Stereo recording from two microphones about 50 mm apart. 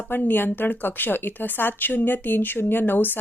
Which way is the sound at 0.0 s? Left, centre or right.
Left.